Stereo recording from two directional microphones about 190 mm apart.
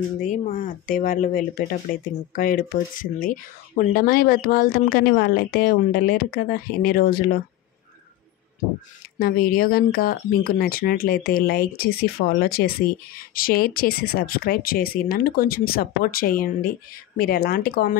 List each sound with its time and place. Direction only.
0.2 s speech: 40° left (ahead or behind)
9.2 s speech: 50° left (ahead or behind)